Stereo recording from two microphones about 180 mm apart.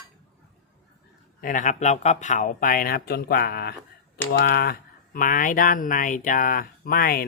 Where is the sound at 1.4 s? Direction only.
45° left (ahead or behind).